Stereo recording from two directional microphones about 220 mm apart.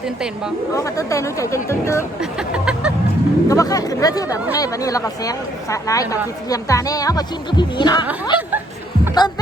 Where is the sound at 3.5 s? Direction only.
15° left (ahead or behind).